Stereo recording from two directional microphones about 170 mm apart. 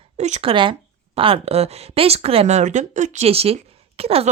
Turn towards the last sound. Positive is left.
turn(degrees=-35)  # may be behind; listen again after turning